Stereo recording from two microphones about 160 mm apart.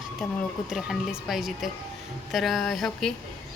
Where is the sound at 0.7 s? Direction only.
Centre (ahead or behind).